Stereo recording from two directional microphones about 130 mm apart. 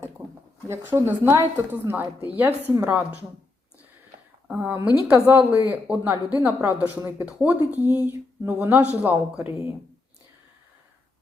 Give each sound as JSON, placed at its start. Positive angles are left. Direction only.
{"t": 0.7, "sound": "a woman's voice", "side_deg": -20}
{"t": 4.4, "sound": "a woman's voice", "side_deg": -10}